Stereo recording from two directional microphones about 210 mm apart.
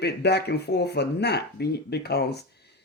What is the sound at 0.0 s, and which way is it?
A man's voice, 50° left (ahead or behind).